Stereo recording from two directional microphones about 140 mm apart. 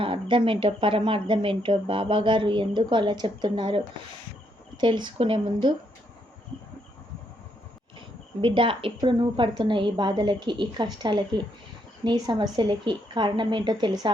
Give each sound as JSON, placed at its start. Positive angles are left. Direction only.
{"t": 0.0, "sound": "speech", "side_deg": -40}
{"t": 8.4, "sound": "speech", "side_deg": -35}